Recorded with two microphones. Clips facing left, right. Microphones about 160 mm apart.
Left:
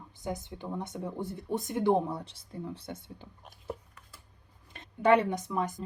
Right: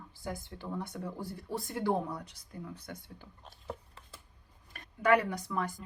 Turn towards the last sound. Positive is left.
turn(degrees=20)  # may be behind; listen again after turning